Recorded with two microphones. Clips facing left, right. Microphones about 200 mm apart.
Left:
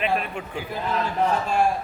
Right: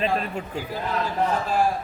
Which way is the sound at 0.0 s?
35° right (ahead or behind).